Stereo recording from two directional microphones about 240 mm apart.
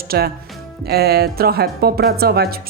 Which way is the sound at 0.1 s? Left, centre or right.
Right.